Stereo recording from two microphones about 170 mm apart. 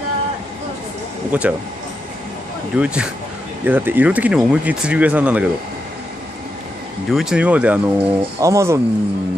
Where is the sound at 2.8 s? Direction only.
5° right (ahead or behind).